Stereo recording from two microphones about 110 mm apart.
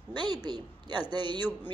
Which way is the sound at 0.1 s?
40° right (ahead or behind).